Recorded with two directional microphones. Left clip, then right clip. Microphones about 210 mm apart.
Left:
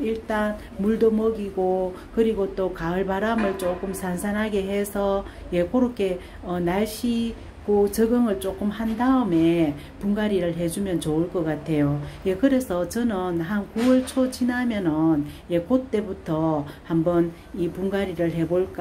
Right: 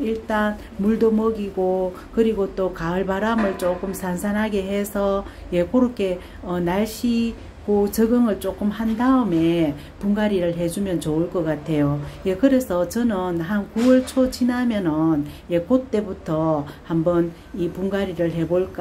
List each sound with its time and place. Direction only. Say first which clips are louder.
0.0 s speech: right 3 dB; centre (ahead or behind)